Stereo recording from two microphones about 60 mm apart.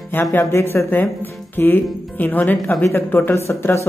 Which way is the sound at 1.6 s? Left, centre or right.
Left.